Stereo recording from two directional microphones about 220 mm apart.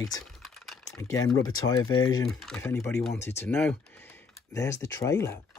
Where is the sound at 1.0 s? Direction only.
15° left (ahead or behind).